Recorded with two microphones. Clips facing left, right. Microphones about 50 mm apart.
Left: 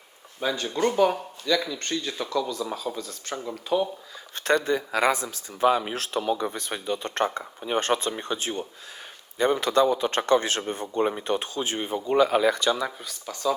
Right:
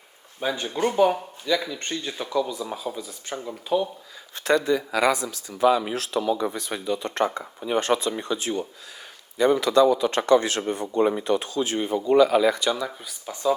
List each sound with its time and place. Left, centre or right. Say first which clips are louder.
0.3 s speech: even; centre
4.6 s speech: right 2 dB; left
12.4 s speech: right 1 dB; left
13.3 s speech: right 2 dB; centre